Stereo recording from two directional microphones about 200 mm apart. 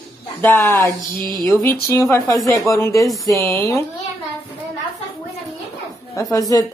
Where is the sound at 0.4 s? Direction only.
10° left (ahead or behind).